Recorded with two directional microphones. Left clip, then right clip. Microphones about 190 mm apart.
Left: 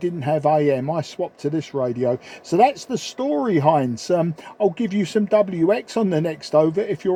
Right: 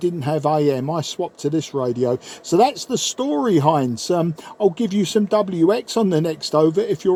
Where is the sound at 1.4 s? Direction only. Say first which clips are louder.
Right 2 dB; 35° left (ahead or behind).